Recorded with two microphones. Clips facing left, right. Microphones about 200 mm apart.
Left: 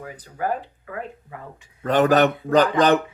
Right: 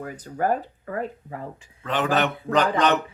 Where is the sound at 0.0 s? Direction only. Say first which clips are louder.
Right 2 dB; 45° right (ahead or behind).